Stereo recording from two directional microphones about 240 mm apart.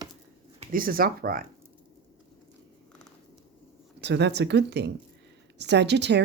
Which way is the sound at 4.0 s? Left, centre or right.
Right.